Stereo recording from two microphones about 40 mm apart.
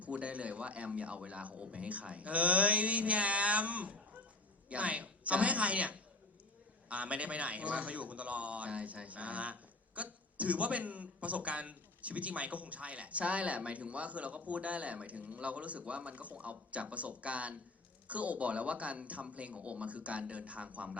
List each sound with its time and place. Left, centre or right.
0.0 s a man's voice: right